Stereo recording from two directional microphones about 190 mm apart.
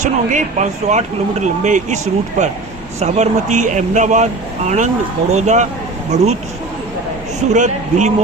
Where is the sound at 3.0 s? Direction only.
40° right (ahead or behind).